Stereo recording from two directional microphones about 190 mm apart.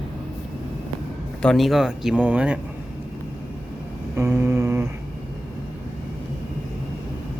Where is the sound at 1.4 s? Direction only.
Centre (ahead or behind).